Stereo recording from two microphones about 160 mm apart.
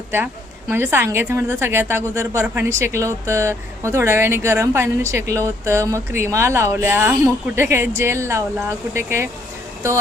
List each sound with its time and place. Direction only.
0.7 s a woman's voice: 15° right (ahead or behind)